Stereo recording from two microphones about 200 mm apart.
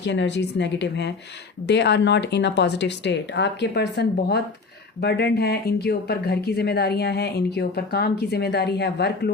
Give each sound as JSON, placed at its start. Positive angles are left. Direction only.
{"t": 0.0, "sound": "a woman's voice", "side_deg": 60}